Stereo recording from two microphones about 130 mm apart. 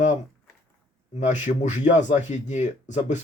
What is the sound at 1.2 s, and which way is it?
Speech, 65° left (ahead or behind).